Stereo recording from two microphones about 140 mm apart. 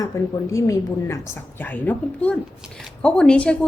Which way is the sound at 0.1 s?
20° left (ahead or behind).